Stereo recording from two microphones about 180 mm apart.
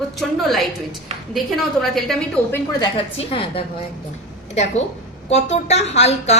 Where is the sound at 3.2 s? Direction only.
30° left (ahead or behind).